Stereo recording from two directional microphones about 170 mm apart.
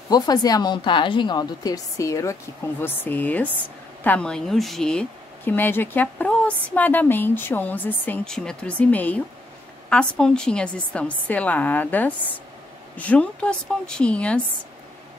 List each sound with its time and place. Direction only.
0.1 s a woman's voice: 25° left (ahead or behind); by 14.4 s 5° left (ahead or behind)